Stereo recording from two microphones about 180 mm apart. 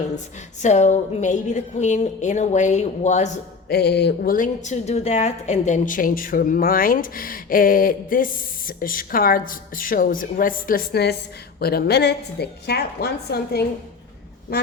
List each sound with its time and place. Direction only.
0.6 s a woman's voice: 40° left (ahead or behind)
3.7 s a woman's voice: 65° left (ahead or behind)